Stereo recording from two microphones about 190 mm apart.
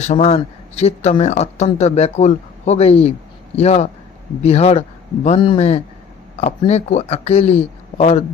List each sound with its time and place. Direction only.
0.0 s speech: 35° left (ahead or behind)